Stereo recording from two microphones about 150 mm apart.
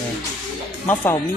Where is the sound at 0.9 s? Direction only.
15° left (ahead or behind).